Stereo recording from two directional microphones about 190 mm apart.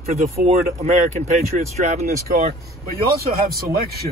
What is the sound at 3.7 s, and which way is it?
Speech, 55° right (ahead or behind).